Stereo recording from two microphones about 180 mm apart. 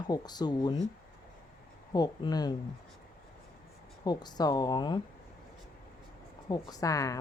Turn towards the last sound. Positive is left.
turn(degrees=20)  # may be behind; listen again after turning